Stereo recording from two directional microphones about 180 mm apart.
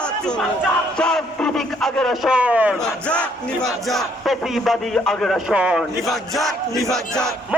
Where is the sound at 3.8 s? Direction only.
Centre (ahead or behind).